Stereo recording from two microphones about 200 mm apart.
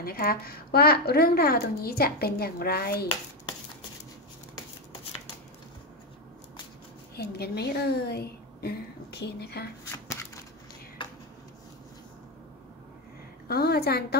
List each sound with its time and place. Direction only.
0.0 s a woman's voice: 50° left (ahead or behind)
7.2 s a woman's voice: 55° left (ahead or behind)
9.8 s shuffling cards: 15° left (ahead or behind)
13.5 s a woman's voice: 50° left (ahead or behind)